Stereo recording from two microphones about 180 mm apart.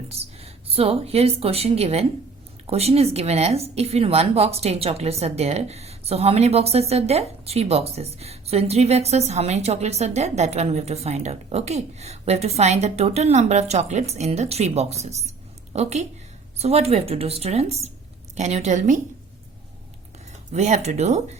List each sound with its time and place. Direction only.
0.1 s a woman's voice: 35° right (ahead or behind)
20.5 s a woman's voice: 40° right (ahead or behind)